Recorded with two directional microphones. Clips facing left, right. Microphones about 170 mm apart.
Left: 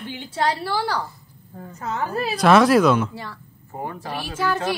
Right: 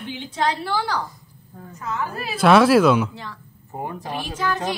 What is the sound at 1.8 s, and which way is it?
Speech, 35° left (ahead or behind).